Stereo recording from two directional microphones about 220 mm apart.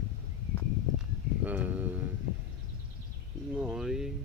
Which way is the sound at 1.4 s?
5° right (ahead or behind).